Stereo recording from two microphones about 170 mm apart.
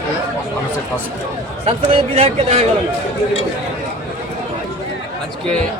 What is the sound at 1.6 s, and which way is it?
A man's voice, 35° right (ahead or behind).